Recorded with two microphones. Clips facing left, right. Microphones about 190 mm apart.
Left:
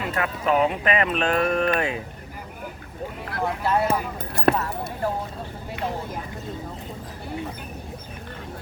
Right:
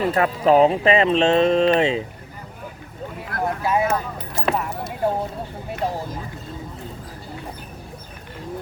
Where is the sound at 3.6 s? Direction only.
10° right (ahead or behind).